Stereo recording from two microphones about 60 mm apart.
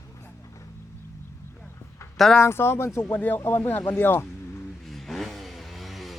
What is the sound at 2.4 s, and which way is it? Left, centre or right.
Speech, left.